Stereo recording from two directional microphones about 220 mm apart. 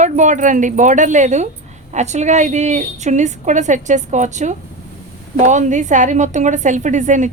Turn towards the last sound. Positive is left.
turn(degrees=-35)  # may be behind; listen again after turning